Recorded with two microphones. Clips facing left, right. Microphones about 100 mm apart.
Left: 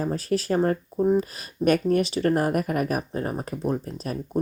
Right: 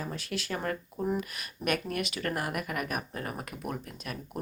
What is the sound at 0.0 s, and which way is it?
Speech, 40° left (ahead or behind).